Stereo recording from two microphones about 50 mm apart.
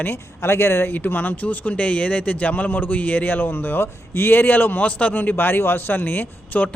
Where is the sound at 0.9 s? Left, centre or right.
Left.